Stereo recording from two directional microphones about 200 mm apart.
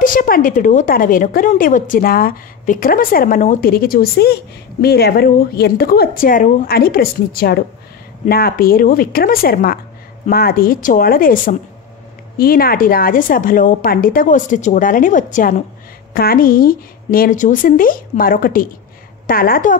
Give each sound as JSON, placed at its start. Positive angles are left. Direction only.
{"t": 0.0, "sound": "a woman's voice", "side_deg": 45}